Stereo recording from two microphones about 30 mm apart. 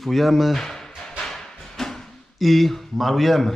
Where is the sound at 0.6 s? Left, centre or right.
Centre.